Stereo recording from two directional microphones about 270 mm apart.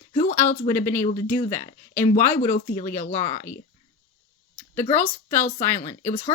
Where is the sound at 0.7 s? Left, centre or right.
Centre.